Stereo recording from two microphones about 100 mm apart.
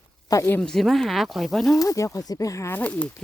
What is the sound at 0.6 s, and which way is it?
Speech, 5° left (ahead or behind).